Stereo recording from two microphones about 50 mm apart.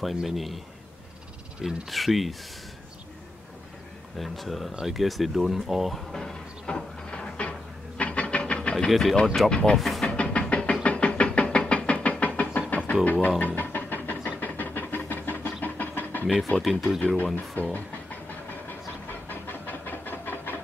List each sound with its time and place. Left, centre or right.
0.0 s speech: centre
1.9 s speech: centre
4.2 s speech: centre
4.7 s a sound: centre; by 8.7 s left
8.7 s speech: centre
9.8 s speech: centre
10.0 s a sound: left
10.5 s knock: left
13.0 s music: left
14.4 s steam: left
15.6 s a sound: left
16.3 s speech: centre
19.2 s a sound: left